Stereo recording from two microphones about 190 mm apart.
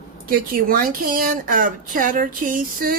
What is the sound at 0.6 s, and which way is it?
Dishes, 50° right (ahead or behind).